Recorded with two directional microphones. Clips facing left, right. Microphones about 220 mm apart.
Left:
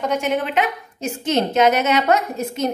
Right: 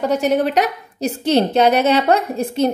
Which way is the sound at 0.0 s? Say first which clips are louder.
Right 5 dB; 35° right (ahead or behind).